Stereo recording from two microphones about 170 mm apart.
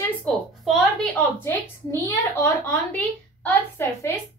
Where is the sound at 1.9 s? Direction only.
15° left (ahead or behind).